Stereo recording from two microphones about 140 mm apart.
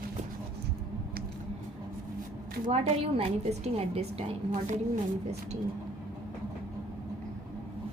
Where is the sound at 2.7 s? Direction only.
50° right (ahead or behind).